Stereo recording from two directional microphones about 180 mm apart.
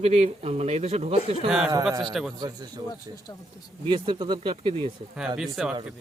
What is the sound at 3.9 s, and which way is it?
Speech, 25° right (ahead or behind).